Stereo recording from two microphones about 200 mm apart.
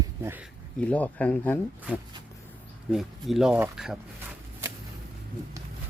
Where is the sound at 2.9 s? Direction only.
Centre (ahead or behind).